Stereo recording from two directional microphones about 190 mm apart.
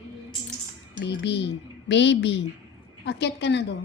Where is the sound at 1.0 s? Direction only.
65° left (ahead or behind).